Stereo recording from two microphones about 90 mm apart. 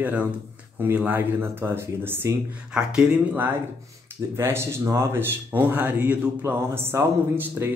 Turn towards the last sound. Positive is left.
turn(degrees=-25)  # may be behind; listen again after turning